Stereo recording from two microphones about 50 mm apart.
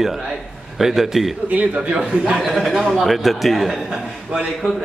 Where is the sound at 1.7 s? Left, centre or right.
Centre.